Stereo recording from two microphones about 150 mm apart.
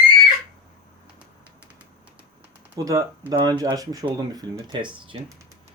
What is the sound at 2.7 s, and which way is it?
Speech, 25° right (ahead or behind).